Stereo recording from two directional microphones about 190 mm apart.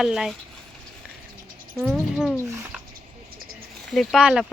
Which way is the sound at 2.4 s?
15° right (ahead or behind).